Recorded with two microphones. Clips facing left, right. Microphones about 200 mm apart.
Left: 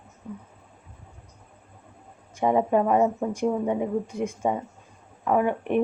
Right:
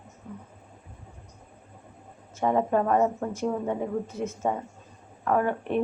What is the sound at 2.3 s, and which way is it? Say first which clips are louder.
Speech: left 2 dB; 15° left (ahead or behind).